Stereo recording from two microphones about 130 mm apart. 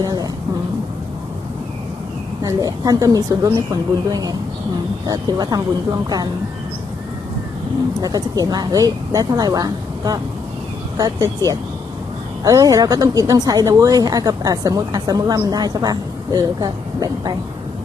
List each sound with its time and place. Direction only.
0.0 s speech: 25° right (ahead or behind)
2.4 s speech: 25° right (ahead or behind)
8.0 s speech: 30° right (ahead or behind)